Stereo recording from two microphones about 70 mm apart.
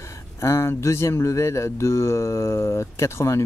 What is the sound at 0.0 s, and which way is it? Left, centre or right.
Speech, left.